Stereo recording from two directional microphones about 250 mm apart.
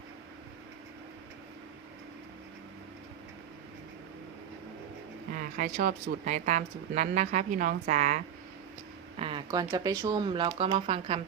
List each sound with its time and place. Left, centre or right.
5.3 s speech: right
9.1 s a sound: right
10.0 s speech: centre